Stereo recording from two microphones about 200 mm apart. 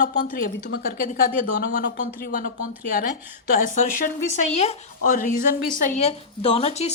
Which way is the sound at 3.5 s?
40° left (ahead or behind).